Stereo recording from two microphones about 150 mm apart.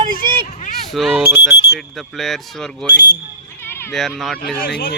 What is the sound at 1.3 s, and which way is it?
Speech, 15° right (ahead or behind).